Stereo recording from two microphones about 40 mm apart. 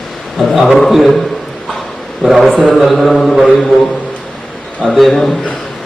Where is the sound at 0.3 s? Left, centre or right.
Centre.